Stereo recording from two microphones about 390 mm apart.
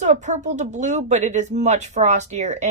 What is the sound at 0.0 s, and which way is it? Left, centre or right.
Speech, centre.